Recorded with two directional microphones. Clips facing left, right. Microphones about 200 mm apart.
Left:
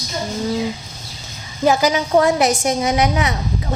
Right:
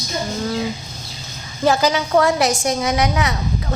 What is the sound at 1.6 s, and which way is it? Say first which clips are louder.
A woman's voice: left 1 dB; 15° left (ahead or behind).